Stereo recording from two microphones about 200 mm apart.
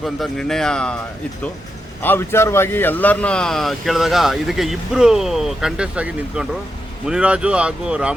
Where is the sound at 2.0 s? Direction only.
10° left (ahead or behind).